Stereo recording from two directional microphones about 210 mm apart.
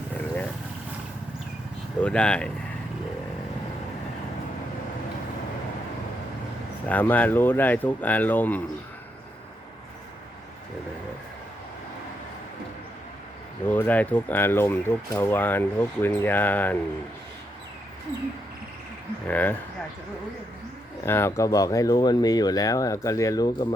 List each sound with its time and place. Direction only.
2.0 s speech: 5° left (ahead or behind)
6.8 s speech: 10° left (ahead or behind)
13.7 s speech: 10° left (ahead or behind)
19.3 s speech: 10° left (ahead or behind)
21.0 s speech: 10° left (ahead or behind)